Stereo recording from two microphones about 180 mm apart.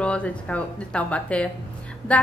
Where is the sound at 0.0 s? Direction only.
5° left (ahead or behind).